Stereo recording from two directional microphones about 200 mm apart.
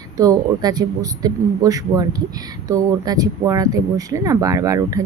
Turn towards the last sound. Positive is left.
turn(degrees=-15)  # may be behind; listen again after turning